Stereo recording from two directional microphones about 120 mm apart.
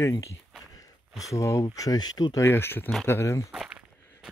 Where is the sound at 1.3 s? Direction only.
25° left (ahead or behind).